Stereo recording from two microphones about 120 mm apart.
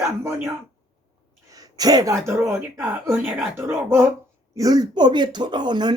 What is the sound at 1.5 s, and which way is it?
Speech, 30° right (ahead or behind).